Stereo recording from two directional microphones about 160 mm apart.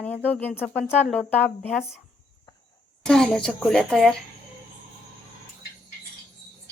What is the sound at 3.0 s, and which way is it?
A woman's voice, 5° left (ahead or behind).